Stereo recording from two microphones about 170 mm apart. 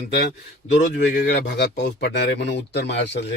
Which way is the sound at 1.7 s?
90° left.